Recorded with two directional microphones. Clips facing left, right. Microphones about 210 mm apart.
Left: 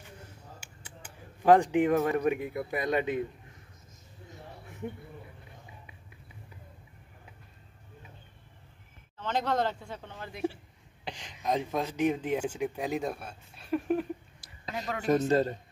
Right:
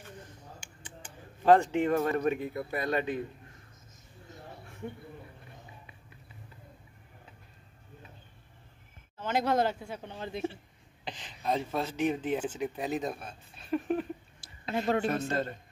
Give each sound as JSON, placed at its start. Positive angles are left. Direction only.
{"t": 0.2, "sound": "mechanisms", "side_deg": 10}
{"t": 9.2, "sound": "speech", "side_deg": -10}
{"t": 10.1, "sound": "a man's voice", "side_deg": -25}
{"t": 11.1, "sound": "a sound", "side_deg": 10}
{"t": 11.4, "sound": "speech", "side_deg": 15}
{"t": 14.4, "sound": "a sound", "side_deg": -30}
{"t": 15.2, "sound": "speech", "side_deg": 35}